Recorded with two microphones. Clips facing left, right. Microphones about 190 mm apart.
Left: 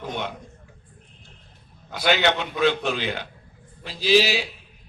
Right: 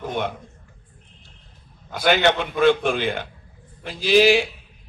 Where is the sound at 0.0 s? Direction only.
50° right (ahead or behind).